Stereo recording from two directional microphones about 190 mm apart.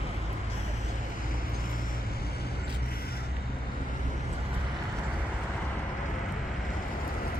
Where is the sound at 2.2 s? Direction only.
55° left (ahead or behind).